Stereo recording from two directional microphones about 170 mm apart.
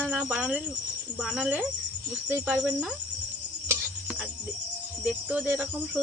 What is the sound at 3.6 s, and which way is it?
Music, 15° right (ahead or behind).